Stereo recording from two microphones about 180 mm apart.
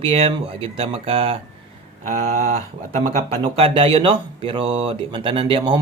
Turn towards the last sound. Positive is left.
turn(degrees=-25)  # may be behind; listen again after turning